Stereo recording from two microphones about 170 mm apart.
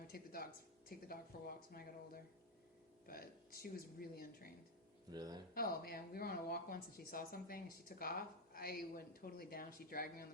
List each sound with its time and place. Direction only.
0.1 s a woman's voice: 60° left (ahead or behind)
5.1 s speech: 25° right (ahead or behind)
5.5 s a woman's voice: 60° left (ahead or behind)